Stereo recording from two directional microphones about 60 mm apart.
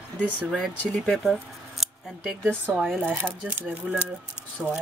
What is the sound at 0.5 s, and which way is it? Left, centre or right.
Speech, centre.